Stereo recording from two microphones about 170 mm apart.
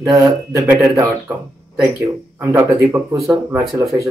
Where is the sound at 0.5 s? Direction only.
10° right (ahead or behind).